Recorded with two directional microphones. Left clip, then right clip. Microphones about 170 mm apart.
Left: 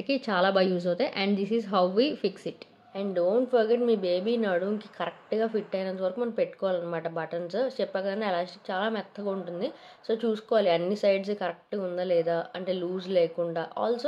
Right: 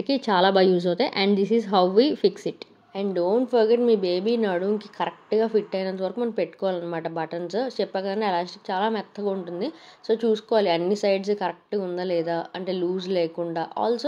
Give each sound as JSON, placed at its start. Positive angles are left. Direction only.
{"t": 0.0, "sound": "a woman's voice", "side_deg": -30}